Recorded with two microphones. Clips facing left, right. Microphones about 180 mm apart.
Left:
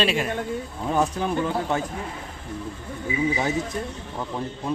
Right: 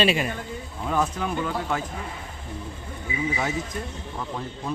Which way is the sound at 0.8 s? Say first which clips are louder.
Left 2 dB; 30° left (ahead or behind).